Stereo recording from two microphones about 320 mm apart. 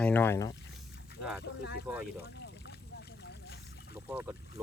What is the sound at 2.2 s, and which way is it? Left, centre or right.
Boat, left.